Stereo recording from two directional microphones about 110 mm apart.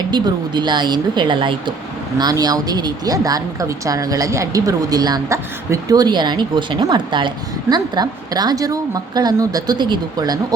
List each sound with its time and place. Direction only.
0.1 s speech: 40° right (ahead or behind)
2.1 s a woman's voice: 35° right (ahead or behind)